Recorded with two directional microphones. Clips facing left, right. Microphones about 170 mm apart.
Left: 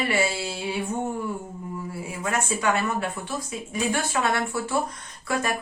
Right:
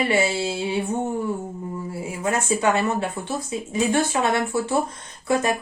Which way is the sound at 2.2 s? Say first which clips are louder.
Right 4 dB; 25° right (ahead or behind).